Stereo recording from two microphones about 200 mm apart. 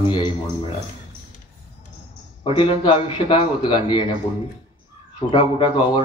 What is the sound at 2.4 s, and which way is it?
A man's voice, 25° left (ahead or behind).